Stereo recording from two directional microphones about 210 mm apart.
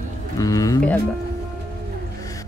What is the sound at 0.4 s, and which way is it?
Music, 15° left (ahead or behind).